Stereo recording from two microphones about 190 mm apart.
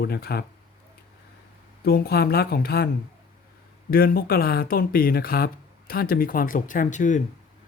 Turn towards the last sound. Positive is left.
turn(degrees=40)  # may be behind; listen again after turning